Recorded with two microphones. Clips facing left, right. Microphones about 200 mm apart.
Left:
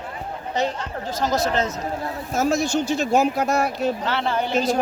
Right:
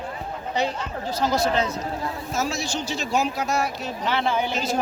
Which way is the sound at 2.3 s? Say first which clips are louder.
Left 8 dB; 50° left (ahead or behind).